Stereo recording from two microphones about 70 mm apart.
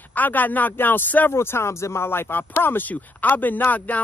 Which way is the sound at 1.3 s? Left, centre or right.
Left.